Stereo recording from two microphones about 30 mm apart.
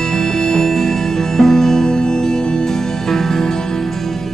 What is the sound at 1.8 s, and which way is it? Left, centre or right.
Music, left.